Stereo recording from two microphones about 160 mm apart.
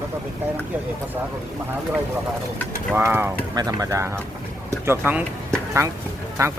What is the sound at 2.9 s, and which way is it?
Speech, 15° right (ahead or behind).